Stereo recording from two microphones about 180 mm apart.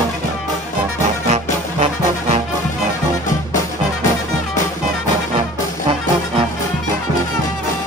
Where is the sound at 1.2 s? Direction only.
35° right (ahead or behind).